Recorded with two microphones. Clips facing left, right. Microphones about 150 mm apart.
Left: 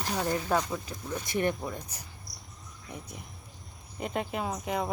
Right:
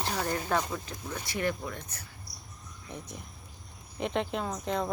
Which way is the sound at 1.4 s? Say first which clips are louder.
Left 1 dB; 20° left (ahead or behind).